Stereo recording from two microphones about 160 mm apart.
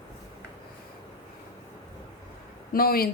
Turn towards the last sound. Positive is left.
turn(degrees=65)  # may be behind; listen again after turning